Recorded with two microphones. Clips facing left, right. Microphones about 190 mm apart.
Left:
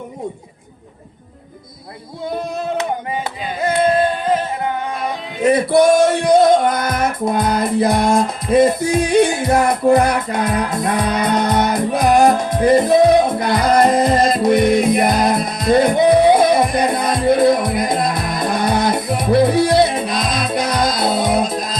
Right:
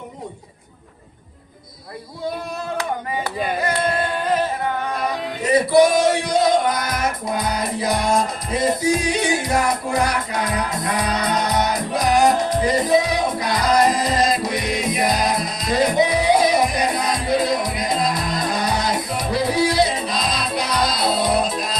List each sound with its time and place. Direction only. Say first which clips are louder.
5.4 s music: left 2 dB; 55° left (ahead or behind)